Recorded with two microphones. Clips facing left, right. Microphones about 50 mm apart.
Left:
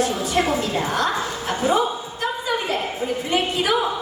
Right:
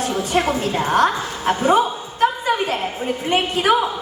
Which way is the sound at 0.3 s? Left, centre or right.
Right.